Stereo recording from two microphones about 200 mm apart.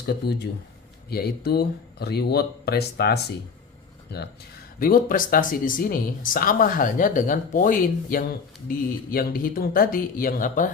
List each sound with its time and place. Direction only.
0.1 s speech: 55° left (ahead or behind)
4.8 s speech: 45° left (ahead or behind)